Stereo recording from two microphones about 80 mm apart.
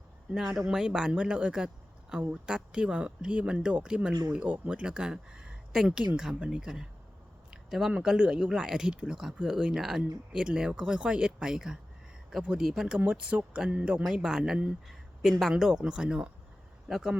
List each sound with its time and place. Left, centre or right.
0.3 s speech: centre